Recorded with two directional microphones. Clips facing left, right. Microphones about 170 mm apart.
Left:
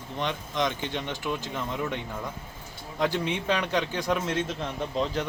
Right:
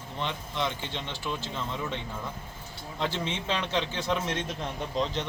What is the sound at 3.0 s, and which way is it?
Speech, 15° left (ahead or behind).